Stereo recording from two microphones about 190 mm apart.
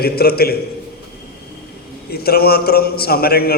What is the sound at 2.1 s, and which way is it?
A man's voice, 55° left (ahead or behind).